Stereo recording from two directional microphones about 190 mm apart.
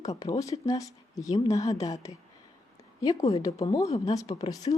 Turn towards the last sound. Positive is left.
turn(degrees=20)  # may be behind; listen again after turning